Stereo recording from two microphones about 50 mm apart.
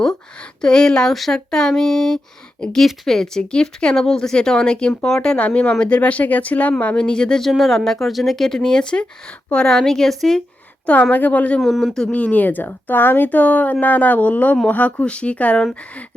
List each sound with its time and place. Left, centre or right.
0.6 s speech: centre
5.4 s speech: left
7.4 s speech: centre
11.1 s speech: left
11.6 s speech: centre
12.1 s speech: left